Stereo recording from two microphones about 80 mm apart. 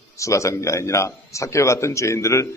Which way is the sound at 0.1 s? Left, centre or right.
Left.